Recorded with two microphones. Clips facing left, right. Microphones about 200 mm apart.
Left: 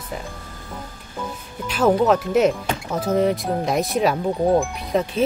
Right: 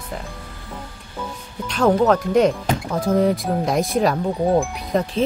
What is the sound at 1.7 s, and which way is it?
Speech, 5° left (ahead or behind).